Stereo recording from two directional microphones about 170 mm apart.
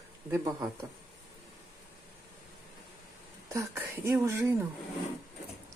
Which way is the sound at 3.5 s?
15° right (ahead or behind).